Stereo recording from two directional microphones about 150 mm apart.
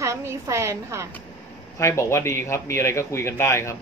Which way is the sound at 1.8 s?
20° left (ahead or behind).